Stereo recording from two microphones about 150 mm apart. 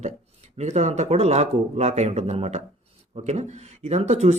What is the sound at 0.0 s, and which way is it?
Speech, 50° right (ahead or behind).